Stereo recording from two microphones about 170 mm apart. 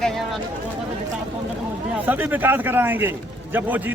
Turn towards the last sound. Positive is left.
turn(degrees=-10)  # may be behind; listen again after turning